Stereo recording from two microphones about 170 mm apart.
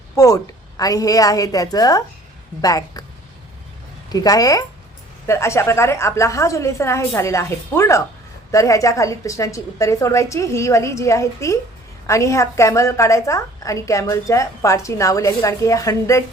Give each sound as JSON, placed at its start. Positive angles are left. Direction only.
{"t": 0.2, "sound": "a woman's voice", "side_deg": 20}
{"t": 4.1, "sound": "a woman's voice", "side_deg": 20}